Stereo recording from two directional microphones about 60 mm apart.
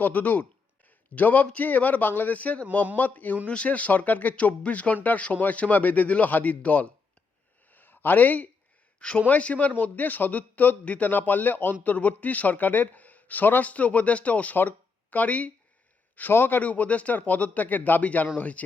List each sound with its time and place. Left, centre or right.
0.0 s a man's voice: left
0.9 s a sound: left
1.5 s a man's voice: left
7.7 s a sound: left
9.0 s a man's voice: left
16.3 s a man's voice: left